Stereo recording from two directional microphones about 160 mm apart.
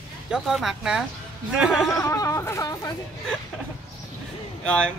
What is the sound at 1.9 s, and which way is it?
Speech, 20° left (ahead or behind).